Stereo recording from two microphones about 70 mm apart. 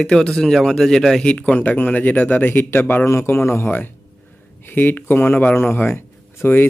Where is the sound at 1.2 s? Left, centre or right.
Centre.